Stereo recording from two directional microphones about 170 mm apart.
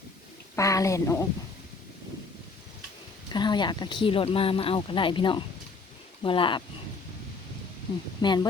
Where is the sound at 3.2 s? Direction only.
25° left (ahead or behind).